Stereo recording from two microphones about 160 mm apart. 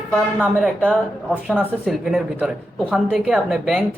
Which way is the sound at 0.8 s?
10° left (ahead or behind).